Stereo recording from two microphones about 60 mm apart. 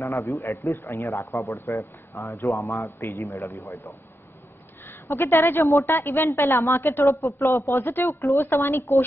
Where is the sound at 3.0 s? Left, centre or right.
Left.